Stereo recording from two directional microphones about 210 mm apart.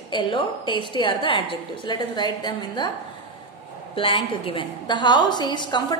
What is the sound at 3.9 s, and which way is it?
A woman's voice, 25° left (ahead or behind).